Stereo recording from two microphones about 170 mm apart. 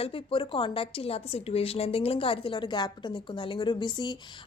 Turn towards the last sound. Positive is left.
turn(degrees=25)  # may be behind; listen again after turning